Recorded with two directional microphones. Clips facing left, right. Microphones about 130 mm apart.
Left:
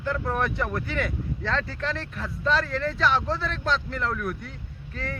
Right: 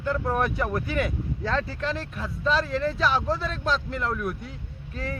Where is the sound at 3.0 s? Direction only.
5° right (ahead or behind).